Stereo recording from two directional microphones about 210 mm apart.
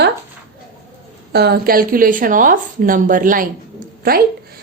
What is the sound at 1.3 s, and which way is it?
A woman's voice, 50° right (ahead or behind).